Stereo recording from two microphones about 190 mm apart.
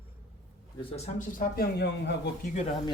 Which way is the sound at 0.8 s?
30° left (ahead or behind).